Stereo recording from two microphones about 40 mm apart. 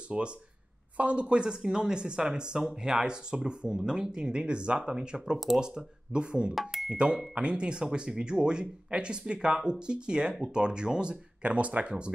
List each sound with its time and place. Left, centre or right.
0.1 s speech: right
6.5 s speech: centre
6.9 s speech: right